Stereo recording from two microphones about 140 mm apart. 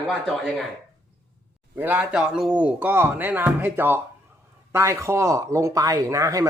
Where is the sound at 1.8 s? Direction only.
10° right (ahead or behind).